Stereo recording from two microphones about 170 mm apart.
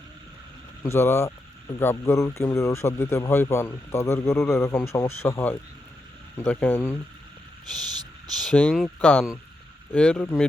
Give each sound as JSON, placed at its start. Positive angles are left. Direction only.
{"t": 0.8, "sound": "speech", "side_deg": 15}
{"t": 8.4, "sound": "speech", "side_deg": 5}